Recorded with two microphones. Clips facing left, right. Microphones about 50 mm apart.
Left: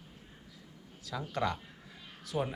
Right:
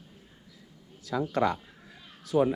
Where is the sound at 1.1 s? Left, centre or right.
Right.